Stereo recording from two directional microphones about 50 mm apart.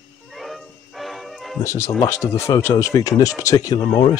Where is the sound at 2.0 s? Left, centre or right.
Left.